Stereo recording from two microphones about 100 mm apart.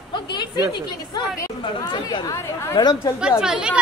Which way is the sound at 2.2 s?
40° left (ahead or behind).